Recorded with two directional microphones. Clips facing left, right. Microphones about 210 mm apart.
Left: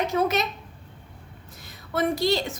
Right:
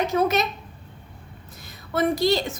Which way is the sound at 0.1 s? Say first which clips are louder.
Right 2 dB; 40° right (ahead or behind).